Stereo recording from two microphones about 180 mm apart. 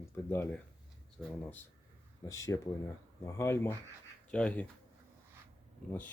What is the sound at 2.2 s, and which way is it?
Speech, 15° left (ahead or behind).